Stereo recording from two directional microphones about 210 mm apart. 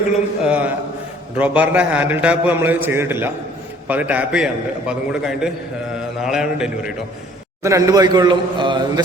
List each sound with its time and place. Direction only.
0.4 s a man's voice: 5° right (ahead or behind)
7.6 s a man's voice: 15° right (ahead or behind)